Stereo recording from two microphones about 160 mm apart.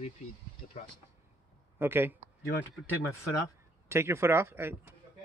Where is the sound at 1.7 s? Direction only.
15° right (ahead or behind).